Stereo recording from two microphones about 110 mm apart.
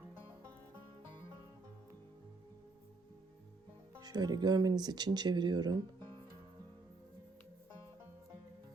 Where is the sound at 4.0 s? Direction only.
35° right (ahead or behind).